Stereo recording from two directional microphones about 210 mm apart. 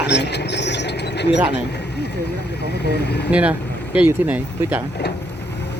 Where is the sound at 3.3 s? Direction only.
5° right (ahead or behind).